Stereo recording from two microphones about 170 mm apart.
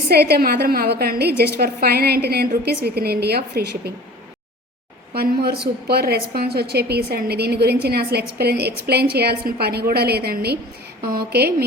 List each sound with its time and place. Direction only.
0.1 s a woman's voice: 70° right (ahead or behind)
5.1 s a woman's voice: 65° right (ahead or behind)